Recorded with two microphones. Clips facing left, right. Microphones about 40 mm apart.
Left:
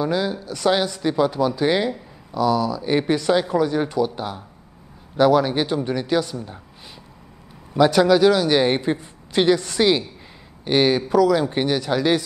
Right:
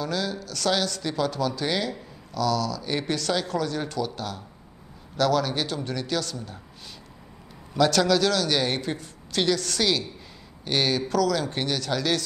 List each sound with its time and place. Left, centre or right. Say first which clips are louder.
0.0 s speech: left 6 dB; left
7.7 s speech: left 6 dB; centre